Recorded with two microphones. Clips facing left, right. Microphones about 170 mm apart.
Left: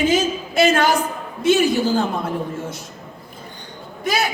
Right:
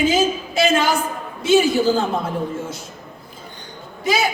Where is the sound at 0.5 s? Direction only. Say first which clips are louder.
Left 2 dB; 55° left (ahead or behind).